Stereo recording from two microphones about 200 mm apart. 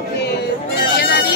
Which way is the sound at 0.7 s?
50° left (ahead or behind).